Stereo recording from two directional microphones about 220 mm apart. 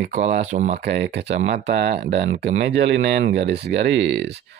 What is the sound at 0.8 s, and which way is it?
Speech, 50° right (ahead or behind).